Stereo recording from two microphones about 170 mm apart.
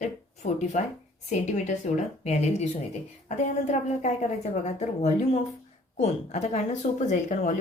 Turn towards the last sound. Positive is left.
turn(degrees=45)  # may be behind; listen again after turning